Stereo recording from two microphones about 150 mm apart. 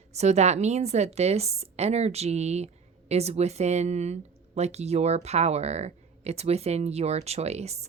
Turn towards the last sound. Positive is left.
turn(degrees=-45)  # may be behind; listen again after turning